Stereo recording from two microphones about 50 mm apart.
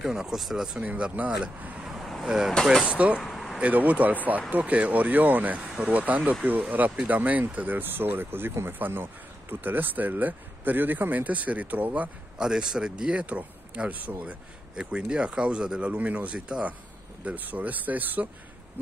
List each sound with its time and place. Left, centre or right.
0.0 s speech: centre
0.8 s speech: right
1.9 s vehicle: centre
2.2 s speech: centre
2.8 s speech: right
3.3 s a sound: centre
3.7 s speech: right
12.4 s speech: centre; by 14.1 s right
14.8 s speech: centre
17.2 s speech: right